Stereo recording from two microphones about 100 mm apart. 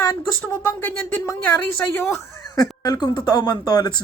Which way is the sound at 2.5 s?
40° left (ahead or behind).